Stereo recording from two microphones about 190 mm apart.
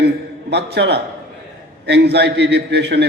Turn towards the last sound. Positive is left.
turn(degrees=-65)  # may be behind; listen again after turning